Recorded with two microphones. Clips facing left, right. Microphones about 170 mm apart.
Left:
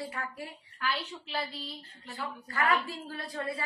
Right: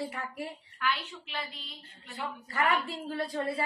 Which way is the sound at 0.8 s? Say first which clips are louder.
Right 1 dB; 35° left (ahead or behind).